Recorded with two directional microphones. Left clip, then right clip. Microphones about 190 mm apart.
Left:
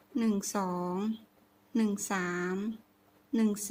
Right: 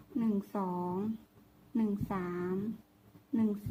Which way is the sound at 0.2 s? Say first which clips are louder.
Left 3 dB; 25° left (ahead or behind).